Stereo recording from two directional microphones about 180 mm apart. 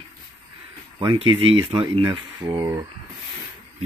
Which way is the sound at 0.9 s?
30° right (ahead or behind).